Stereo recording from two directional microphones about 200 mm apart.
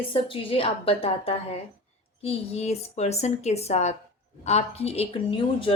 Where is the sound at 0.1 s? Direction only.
25° left (ahead or behind).